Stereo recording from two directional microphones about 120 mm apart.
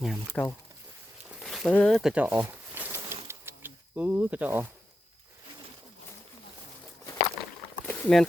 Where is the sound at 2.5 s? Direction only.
20° right (ahead or behind).